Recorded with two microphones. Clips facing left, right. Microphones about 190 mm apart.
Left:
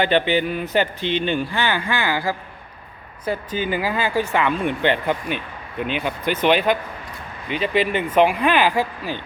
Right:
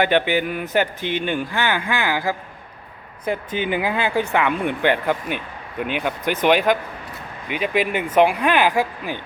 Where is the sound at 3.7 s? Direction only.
20° right (ahead or behind).